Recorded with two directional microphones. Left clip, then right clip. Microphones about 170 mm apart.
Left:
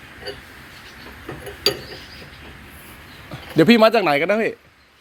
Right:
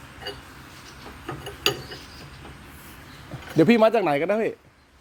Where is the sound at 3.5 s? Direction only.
Centre (ahead or behind).